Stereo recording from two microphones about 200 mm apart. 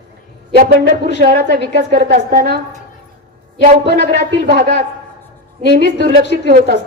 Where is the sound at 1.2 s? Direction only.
50° right (ahead or behind).